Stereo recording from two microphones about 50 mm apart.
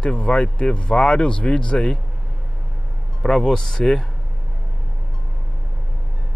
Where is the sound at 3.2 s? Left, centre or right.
Centre.